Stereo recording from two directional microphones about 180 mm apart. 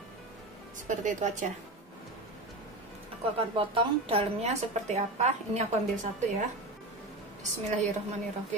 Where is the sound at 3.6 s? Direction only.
30° right (ahead or behind).